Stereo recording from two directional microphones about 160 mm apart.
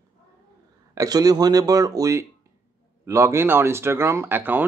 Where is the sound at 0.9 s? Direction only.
20° right (ahead or behind).